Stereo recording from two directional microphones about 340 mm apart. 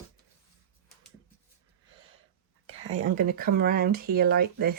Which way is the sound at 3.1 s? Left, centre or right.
Right.